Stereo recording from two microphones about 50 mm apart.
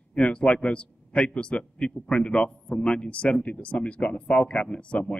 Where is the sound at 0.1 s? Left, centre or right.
Left.